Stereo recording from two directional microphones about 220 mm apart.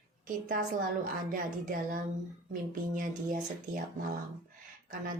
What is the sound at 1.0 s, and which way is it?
A woman's voice, 40° right (ahead or behind).